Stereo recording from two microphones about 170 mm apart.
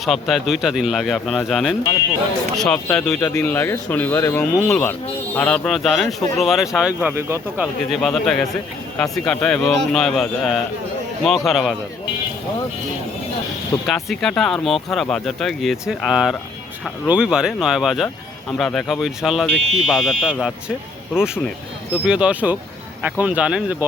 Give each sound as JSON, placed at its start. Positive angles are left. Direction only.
{"t": 0.0, "sound": "speech", "side_deg": 0}
{"t": 3.2, "sound": "speech", "side_deg": 15}
{"t": 7.9, "sound": "speech", "side_deg": 0}
{"t": 13.8, "sound": "speech", "side_deg": 0}
{"t": 22.0, "sound": "speech", "side_deg": -5}